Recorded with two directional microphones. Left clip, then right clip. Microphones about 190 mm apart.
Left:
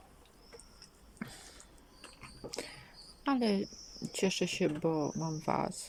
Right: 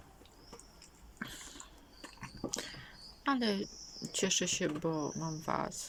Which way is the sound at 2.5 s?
5° left (ahead or behind).